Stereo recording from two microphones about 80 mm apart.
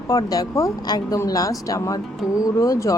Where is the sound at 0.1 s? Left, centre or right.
Left.